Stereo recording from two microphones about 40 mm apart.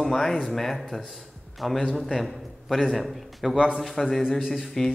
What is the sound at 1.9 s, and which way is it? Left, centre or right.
A man's voice, centre.